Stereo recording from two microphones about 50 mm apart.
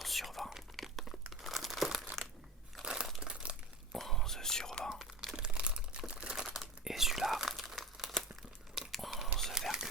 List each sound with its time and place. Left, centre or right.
0.0 s whispering: centre
1.3 s crumpling: centre
2.8 s crumpling: centre
3.9 s whispering: centre
4.9 s crumpling: centre
5.4 s a sound: centre
6.1 s crumpling: right
6.5 s crumpling: centre
8.9 s whispering: centre
9.6 s a sound: centre